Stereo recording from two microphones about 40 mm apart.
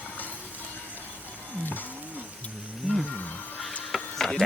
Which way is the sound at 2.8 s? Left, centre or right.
Right.